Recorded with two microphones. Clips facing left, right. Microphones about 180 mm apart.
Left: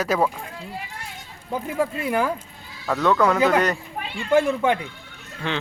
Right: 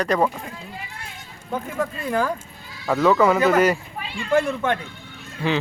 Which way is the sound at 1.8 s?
5° left (ahead or behind).